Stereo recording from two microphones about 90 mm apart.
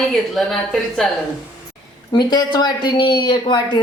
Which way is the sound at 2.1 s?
50° left (ahead or behind).